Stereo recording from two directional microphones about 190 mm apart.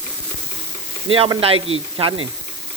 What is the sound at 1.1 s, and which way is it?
Speech, 30° right (ahead or behind).